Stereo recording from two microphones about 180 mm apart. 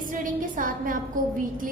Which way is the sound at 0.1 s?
50° right (ahead or behind).